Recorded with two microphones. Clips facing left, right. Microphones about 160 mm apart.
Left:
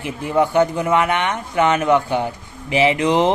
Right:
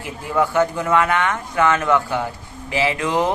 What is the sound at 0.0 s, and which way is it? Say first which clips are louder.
Speech: left 3 dB; 20° left (ahead or behind).